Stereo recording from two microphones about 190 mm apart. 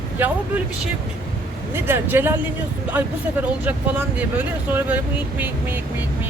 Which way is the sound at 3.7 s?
10° right (ahead or behind).